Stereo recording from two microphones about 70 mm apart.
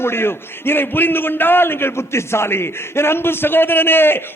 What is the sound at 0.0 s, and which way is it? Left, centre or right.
A man's voice, left.